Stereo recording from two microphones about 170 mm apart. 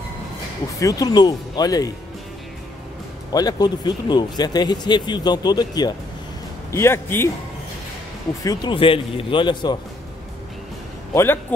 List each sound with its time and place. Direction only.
0.7 s speech: 20° left (ahead or behind)
3.3 s a man's voice: 20° left (ahead or behind)
8.5 s speech: 30° left (ahead or behind)